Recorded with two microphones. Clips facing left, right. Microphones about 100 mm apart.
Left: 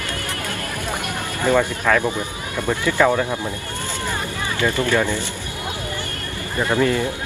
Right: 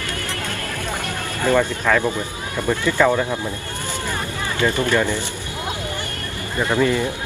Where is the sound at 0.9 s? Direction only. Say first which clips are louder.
Left 1 dB; 15° left (ahead or behind).